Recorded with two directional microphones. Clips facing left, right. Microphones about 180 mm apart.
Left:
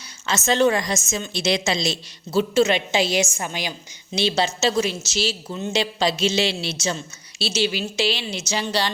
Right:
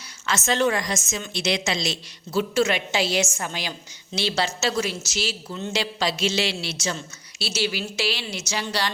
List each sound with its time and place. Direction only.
0.3 s a woman's voice: 20° left (ahead or behind)
5.5 s a woman's voice: 20° left (ahead or behind)